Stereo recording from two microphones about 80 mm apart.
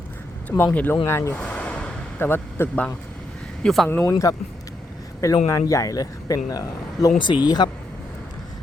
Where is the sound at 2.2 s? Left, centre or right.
Left.